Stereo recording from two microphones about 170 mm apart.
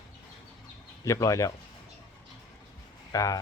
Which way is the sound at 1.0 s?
20° left (ahead or behind).